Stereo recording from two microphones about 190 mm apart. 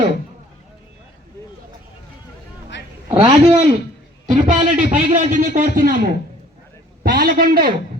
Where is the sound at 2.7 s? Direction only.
70° left (ahead or behind).